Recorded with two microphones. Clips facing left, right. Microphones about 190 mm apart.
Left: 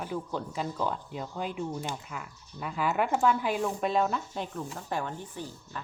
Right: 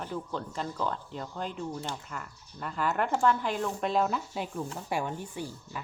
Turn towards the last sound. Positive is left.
turn(degrees=-10)  # may be behind; listen again after turning